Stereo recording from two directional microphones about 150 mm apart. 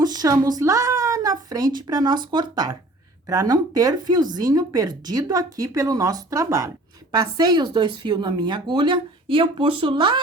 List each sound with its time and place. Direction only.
0.0 s speech: 25° right (ahead or behind)